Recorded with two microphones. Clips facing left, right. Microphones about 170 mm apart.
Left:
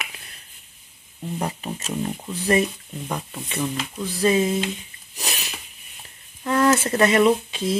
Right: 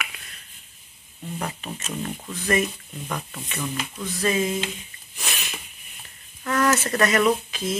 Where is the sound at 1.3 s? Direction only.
30° left (ahead or behind).